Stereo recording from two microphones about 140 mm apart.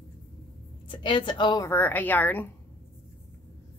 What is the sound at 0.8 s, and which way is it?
Speech, 35° left (ahead or behind).